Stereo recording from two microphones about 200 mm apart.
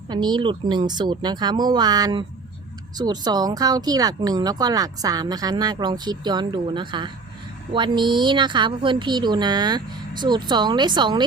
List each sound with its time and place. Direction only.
0.1 s speech: 20° right (ahead or behind)